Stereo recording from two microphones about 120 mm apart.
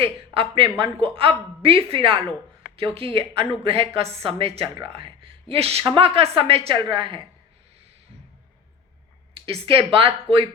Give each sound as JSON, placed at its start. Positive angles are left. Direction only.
{"t": 0.3, "sound": "a woman's voice", "side_deg": -45}
{"t": 5.8, "sound": "a woman's voice", "side_deg": -40}
{"t": 6.7, "sound": "a woman's voice", "side_deg": -40}
{"t": 9.3, "sound": "a woman's voice", "side_deg": -50}